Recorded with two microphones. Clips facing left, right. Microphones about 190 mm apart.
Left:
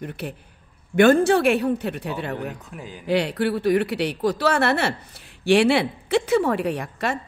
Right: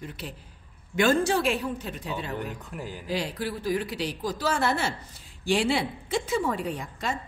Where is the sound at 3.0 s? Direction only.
65° left (ahead or behind).